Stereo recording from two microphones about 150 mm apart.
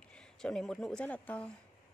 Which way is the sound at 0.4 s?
5° left (ahead or behind).